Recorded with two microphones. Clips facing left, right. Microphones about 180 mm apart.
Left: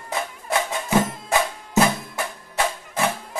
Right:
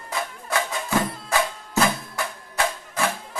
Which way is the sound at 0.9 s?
20° left (ahead or behind).